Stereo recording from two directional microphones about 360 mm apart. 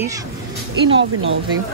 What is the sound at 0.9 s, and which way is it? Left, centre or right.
Speech, right.